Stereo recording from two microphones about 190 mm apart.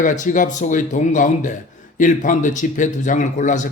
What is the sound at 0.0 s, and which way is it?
Speech, 40° left (ahead or behind).